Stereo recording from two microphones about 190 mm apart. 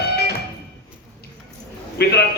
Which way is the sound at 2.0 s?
60° left (ahead or behind).